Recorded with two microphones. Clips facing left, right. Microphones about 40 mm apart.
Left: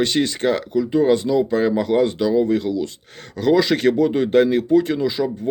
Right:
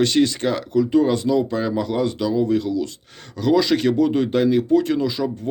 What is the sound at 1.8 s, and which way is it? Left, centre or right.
A man's voice, left.